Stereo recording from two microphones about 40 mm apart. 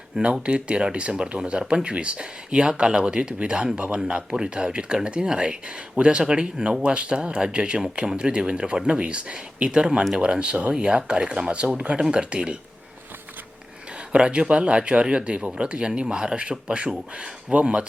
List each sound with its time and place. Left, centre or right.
0.4 s speech: right
14.1 s speech: right